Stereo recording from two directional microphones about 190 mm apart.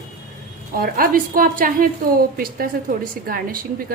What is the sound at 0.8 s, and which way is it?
A woman's voice, 50° right (ahead or behind).